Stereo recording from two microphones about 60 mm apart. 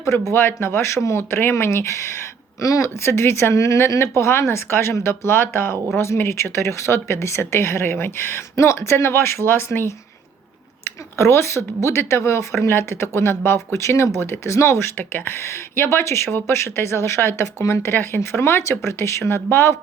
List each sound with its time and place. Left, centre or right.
0.3 s speech: left
8.5 s speech: left
11.2 s speech: left